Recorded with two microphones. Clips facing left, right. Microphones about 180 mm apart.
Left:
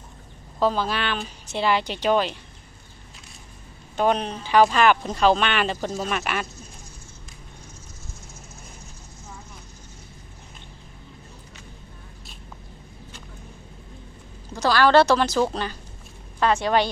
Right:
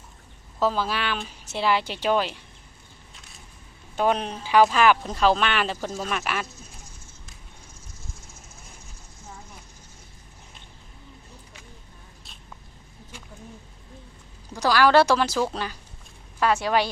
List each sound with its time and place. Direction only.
0.6 s speech: 5° right (ahead or behind)
3.9 s speech: 5° right (ahead or behind)
14.5 s a woman's voice: 10° right (ahead or behind)